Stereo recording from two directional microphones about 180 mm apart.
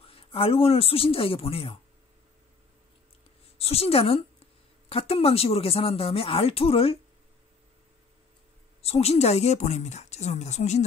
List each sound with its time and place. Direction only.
0.0 s speech: 30° left (ahead or behind)
3.5 s a woman's voice: 35° left (ahead or behind)
8.8 s speech: 35° left (ahead or behind)